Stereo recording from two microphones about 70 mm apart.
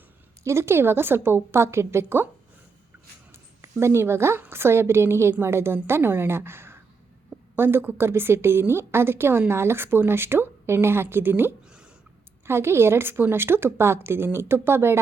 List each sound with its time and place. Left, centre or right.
0.4 s a woman's voice: right
3.6 s a woman's voice: right